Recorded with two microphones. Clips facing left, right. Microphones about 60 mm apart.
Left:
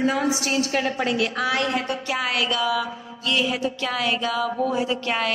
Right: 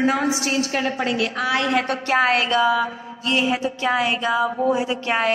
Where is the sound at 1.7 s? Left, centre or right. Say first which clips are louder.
Right 6 dB; right.